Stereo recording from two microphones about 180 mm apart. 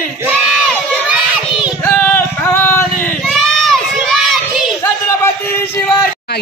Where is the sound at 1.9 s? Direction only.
10° left (ahead or behind).